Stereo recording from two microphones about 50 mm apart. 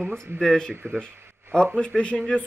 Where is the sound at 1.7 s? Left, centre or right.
Left.